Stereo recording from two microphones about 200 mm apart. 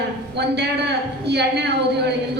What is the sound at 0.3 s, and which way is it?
A woman's voice, 55° right (ahead or behind).